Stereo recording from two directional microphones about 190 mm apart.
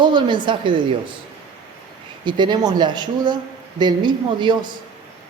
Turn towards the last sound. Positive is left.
turn(degrees=-25)  # may be behind; listen again after turning